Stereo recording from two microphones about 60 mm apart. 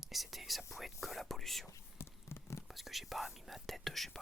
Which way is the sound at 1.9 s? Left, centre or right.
Left.